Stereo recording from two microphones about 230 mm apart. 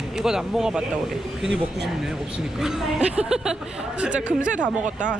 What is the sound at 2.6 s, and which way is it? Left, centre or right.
Speech, centre.